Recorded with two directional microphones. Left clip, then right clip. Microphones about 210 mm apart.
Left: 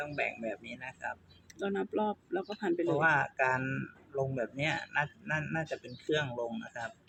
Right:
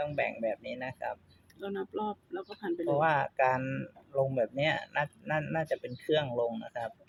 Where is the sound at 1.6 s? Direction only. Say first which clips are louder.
Left 3 dB; 10° left (ahead or behind).